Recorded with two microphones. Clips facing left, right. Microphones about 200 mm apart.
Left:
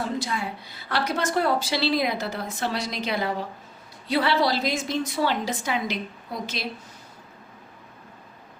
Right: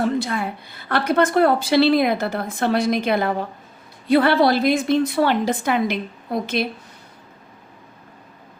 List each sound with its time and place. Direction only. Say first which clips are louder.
0.0 s a woman's voice: right 7 dB; 55° right (ahead or behind)